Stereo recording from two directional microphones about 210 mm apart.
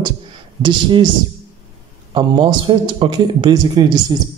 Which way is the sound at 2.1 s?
20° right (ahead or behind).